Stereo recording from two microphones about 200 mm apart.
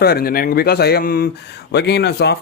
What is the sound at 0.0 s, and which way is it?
Speech, 50° left (ahead or behind).